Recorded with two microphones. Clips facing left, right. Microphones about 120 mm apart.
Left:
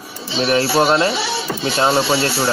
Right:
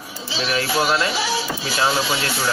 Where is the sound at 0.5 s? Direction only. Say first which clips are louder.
Left 6 dB; 30° left (ahead or behind).